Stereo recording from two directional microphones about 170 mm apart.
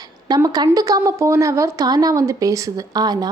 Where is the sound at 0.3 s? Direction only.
20° right (ahead or behind).